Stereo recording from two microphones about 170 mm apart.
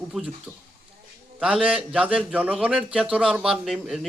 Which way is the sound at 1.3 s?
5° right (ahead or behind).